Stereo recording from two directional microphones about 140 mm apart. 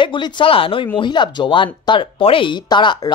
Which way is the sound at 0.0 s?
35° left (ahead or behind).